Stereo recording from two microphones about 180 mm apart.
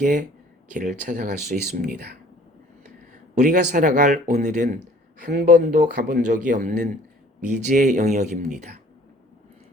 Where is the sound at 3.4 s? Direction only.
45° right (ahead or behind).